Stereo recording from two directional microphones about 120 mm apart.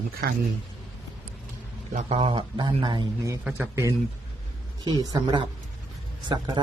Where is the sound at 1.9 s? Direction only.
70° right (ahead or behind).